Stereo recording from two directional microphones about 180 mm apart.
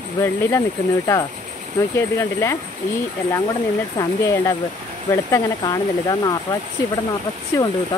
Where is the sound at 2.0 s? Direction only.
15° left (ahead or behind).